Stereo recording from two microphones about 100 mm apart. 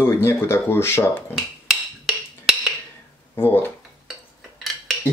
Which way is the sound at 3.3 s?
20° left (ahead or behind).